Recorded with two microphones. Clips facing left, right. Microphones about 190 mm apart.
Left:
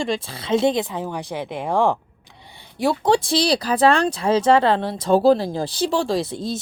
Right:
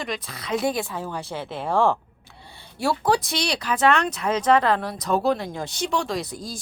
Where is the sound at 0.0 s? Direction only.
30° left (ahead or behind).